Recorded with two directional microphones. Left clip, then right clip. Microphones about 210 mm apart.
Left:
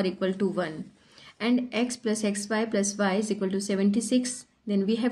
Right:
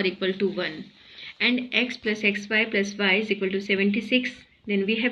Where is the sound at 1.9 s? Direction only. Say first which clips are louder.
Right 5 dB; 45° left (ahead or behind).